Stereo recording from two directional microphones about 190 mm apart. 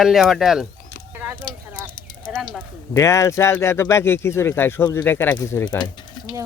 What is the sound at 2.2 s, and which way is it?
Speech, 5° left (ahead or behind).